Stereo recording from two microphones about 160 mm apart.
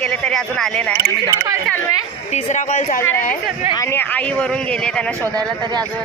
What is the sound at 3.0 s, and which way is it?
Speech, 15° left (ahead or behind).